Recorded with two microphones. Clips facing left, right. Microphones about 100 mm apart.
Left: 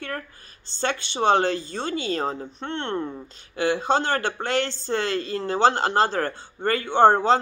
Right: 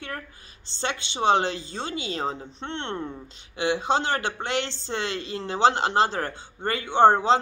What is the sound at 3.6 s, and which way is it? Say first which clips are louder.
A man's voice: left 2 dB; 20° right (ahead or behind).